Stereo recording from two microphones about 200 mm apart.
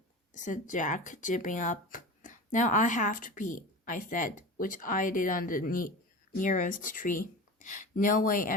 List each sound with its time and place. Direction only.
0.3 s speech: 40° left (ahead or behind)